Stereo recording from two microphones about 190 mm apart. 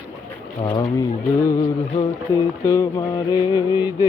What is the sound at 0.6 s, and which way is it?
Speech, 20° left (ahead or behind).